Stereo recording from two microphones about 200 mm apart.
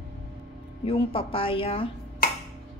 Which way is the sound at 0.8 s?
30° left (ahead or behind).